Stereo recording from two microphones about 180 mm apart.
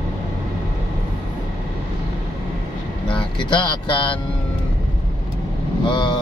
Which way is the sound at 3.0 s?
25° left (ahead or behind).